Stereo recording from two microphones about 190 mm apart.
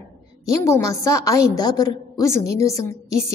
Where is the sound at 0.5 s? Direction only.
15° left (ahead or behind).